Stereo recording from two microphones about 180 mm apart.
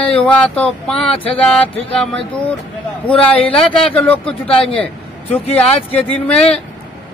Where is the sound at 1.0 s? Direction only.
30° left (ahead or behind).